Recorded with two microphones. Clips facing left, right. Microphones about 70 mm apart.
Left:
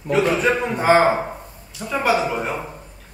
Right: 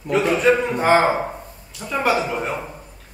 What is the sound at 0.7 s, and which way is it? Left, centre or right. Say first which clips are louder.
Speech: left 1 dB; centre.